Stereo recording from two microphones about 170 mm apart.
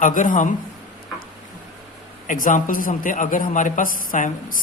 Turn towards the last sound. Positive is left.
turn(degrees=50)  # may be behind; listen again after turning